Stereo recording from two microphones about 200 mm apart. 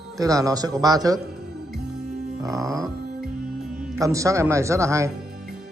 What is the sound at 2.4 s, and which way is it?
Speech, 15° right (ahead or behind).